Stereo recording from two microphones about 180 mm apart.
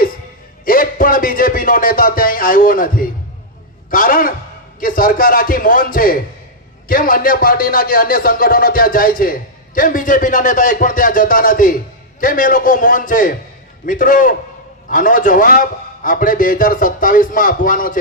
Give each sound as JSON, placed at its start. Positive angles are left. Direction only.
{"t": 0.6, "sound": "speech", "side_deg": 50}